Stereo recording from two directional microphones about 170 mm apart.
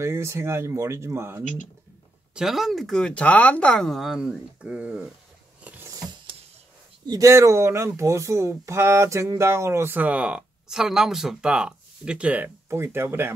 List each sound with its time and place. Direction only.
0.0 s speech: 15° right (ahead or behind)
2.3 s speech: centre (ahead or behind)
5.6 s a sound: 10° right (ahead or behind)
7.1 s speech: 20° right (ahead or behind)